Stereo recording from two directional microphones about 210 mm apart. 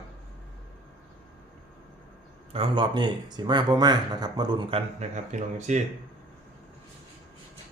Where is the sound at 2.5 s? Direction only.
25° right (ahead or behind).